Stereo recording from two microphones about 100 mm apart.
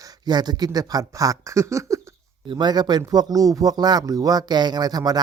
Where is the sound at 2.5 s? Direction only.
45° right (ahead or behind).